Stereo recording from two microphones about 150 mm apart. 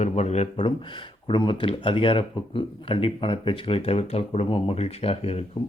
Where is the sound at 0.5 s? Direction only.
35° left (ahead or behind).